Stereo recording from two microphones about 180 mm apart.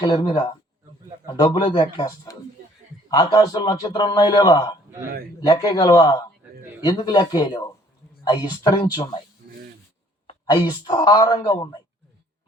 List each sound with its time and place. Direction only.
0.0 s a woman's voice: 25° left (ahead or behind)
5.9 s a woman's voice: 25° left (ahead or behind)
10.2 s a woman's voice: 25° left (ahead or behind)